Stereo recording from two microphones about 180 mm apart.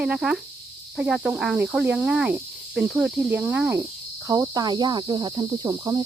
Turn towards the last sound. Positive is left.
turn(degrees=-25)  # may be behind; listen again after turning